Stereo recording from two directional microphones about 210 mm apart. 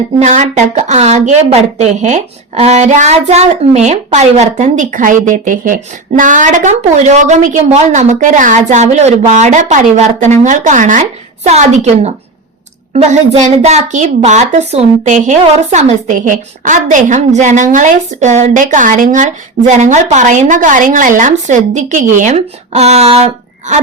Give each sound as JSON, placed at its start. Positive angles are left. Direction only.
{"t": 0.2, "sound": "a woman's voice", "side_deg": -35}